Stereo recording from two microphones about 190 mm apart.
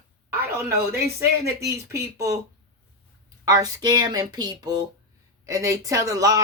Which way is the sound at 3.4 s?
20° right (ahead or behind).